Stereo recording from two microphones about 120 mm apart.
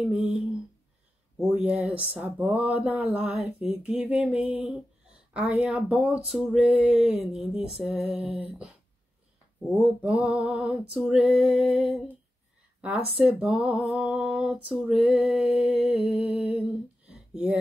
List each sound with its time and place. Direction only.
0.0 s speech: 10° right (ahead or behind)
1.5 s speech: 15° right (ahead or behind)
3.7 s mantra: centre (ahead or behind)
4.0 s speech: 10° right (ahead or behind)
6.9 s mantra: 5° right (ahead or behind)
9.6 s speech: 10° right (ahead or behind)
11.0 s mantra: 5° right (ahead or behind)
12.8 s speech: 5° right (ahead or behind)
17.1 s a sound: 10° right (ahead or behind)